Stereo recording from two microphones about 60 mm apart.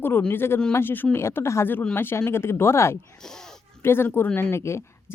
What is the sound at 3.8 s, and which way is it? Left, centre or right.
Speech, left.